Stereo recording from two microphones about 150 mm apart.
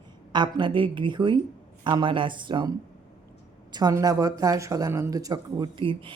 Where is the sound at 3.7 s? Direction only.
25° right (ahead or behind).